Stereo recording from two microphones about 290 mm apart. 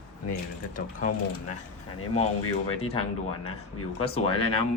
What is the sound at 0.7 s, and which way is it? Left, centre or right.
Speech, left.